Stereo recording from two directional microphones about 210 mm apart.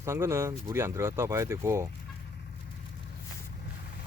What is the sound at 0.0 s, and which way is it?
Speech, 15° right (ahead or behind).